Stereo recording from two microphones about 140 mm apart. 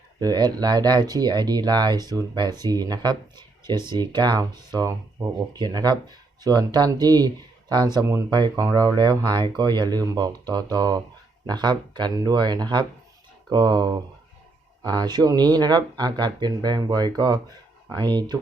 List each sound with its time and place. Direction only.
0.2 s speech: 30° right (ahead or behind)